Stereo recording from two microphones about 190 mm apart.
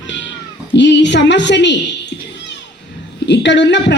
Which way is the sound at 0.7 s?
70° left (ahead or behind).